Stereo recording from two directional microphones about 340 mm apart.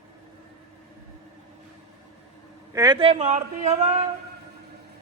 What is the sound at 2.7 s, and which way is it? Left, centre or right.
Speech, centre.